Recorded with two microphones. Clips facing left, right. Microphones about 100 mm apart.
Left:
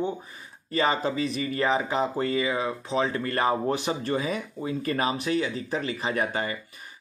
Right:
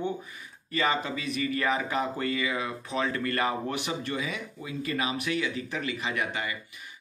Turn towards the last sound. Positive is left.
turn(degrees=35)  # may be behind; listen again after turning